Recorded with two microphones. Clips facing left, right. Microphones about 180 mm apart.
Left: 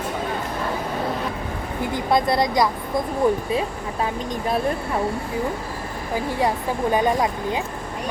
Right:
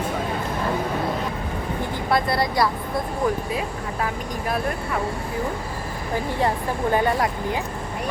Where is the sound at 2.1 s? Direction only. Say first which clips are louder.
Left 2 dB; 20° left (ahead or behind).